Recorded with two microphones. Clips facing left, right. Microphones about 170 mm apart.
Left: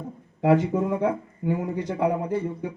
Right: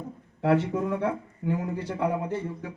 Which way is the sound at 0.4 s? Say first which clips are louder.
Left 3 dB; 15° left (ahead or behind).